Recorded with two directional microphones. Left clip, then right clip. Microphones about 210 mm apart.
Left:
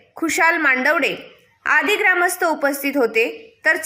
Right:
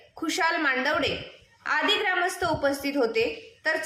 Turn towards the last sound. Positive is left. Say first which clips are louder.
# left 8 dB
turn(degrees=45)  # may be behind; listen again after turning